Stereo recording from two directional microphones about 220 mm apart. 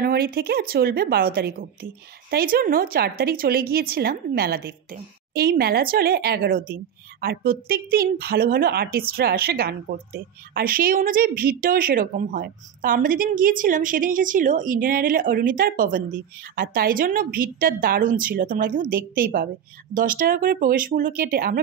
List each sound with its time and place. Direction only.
0.0 s a woman's voice: 45° right (ahead or behind)